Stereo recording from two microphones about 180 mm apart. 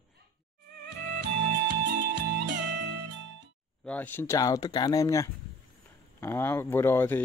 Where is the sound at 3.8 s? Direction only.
10° left (ahead or behind).